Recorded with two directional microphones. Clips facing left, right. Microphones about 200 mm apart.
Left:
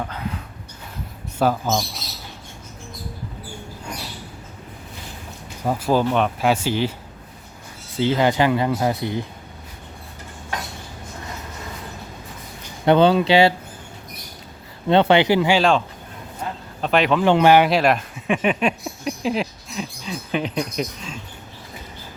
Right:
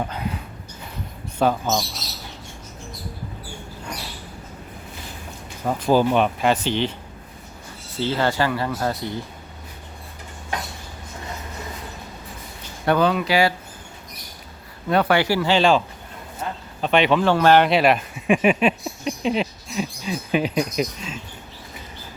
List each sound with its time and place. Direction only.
1.4 s speech: 5° left (ahead or behind)
5.6 s speech: 5° left (ahead or behind)
6.5 s speech: 10° left (ahead or behind)
7.9 s speech: 15° left (ahead or behind)
12.8 s speech: 25° left (ahead or behind)
14.8 s speech: 25° left (ahead or behind)
15.5 s speech: centre (ahead or behind)
16.4 s a sound: centre (ahead or behind)
17.2 s speech: 15° left (ahead or behind)
17.7 s speech: centre (ahead or behind)